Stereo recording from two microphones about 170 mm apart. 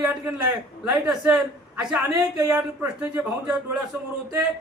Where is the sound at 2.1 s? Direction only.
20° right (ahead or behind).